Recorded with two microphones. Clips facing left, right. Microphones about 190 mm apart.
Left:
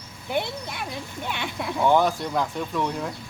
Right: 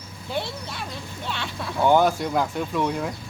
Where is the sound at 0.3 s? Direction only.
15° left (ahead or behind).